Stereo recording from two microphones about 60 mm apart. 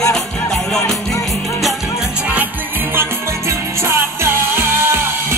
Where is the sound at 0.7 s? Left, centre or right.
Left.